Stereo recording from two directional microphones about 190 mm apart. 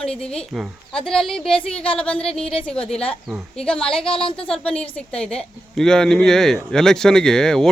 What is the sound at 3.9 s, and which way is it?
Speech, 30° left (ahead or behind).